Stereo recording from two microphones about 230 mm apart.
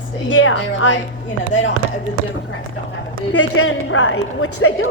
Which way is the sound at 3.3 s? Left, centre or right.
Left.